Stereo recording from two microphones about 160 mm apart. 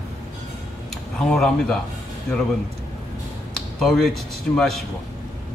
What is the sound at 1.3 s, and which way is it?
Speech, 5° left (ahead or behind).